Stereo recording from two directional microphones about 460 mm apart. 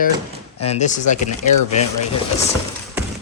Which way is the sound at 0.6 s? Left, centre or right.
Centre.